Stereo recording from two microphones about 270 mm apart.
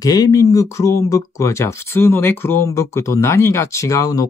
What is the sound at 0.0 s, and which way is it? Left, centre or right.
Speech, centre.